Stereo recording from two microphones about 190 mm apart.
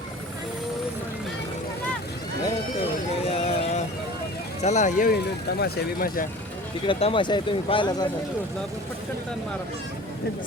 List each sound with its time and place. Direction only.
3.2 s a sound: 30° left (ahead or behind)
4.6 s speech: 40° left (ahead or behind)
6.8 s speech: 25° left (ahead or behind)